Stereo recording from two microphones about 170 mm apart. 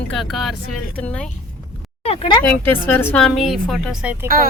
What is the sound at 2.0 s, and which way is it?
Speech, 35° left (ahead or behind).